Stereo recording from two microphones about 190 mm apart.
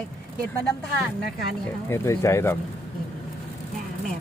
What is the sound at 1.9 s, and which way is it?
Speech, 15° left (ahead or behind).